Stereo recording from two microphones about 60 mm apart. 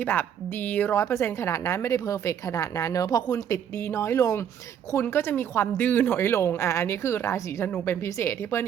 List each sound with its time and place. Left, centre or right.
0.0 s speech: left
0.9 s speech: left
3.5 s speech: left
6.1 s speech: left